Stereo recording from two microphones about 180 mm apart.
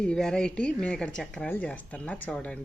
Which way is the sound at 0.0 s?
5° left (ahead or behind).